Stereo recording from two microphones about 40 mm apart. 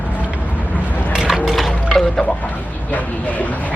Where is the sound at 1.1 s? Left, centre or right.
Centre.